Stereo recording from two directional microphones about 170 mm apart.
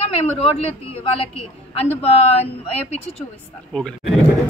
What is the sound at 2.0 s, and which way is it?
Speech, 35° left (ahead or behind).